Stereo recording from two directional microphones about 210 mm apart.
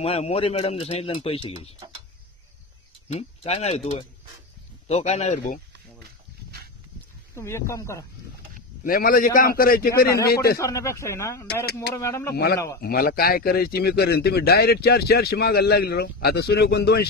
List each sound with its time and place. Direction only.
0.0 s speech: 30° left (ahead or behind)
3.2 s speech: 30° left (ahead or behind)
7.3 s speech: 15° left (ahead or behind)
8.8 s speech: 45° left (ahead or behind)
10.6 s speech: 15° left (ahead or behind)
12.8 s speech: 45° left (ahead or behind)